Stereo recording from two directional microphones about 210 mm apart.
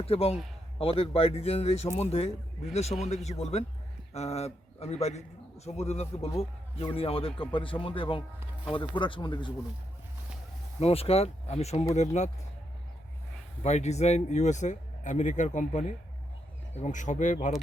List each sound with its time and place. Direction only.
0.0 s a man's voice: 30° left (ahead or behind)
10.8 s speech: 30° left (ahead or behind)
13.6 s speech: 30° left (ahead or behind)